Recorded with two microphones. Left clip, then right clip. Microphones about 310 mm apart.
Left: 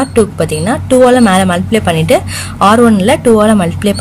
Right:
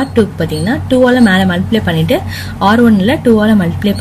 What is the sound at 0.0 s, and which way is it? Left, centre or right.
A woman's voice, left.